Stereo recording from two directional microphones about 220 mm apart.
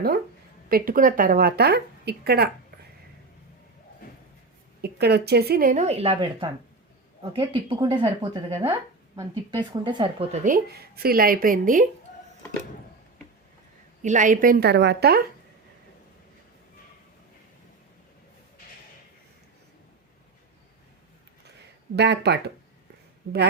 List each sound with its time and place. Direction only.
0.7 s a woman's voice: 40° right (ahead or behind)
4.8 s a woman's voice: 45° right (ahead or behind); by 10.2 s 20° right (ahead or behind)
10.4 s speech: 40° right (ahead or behind)
14.0 s speech: 35° right (ahead or behind)
21.9 s a woman's voice: 50° right (ahead or behind)